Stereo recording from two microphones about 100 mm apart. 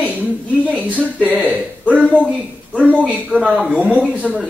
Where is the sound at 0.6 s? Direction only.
15° left (ahead or behind).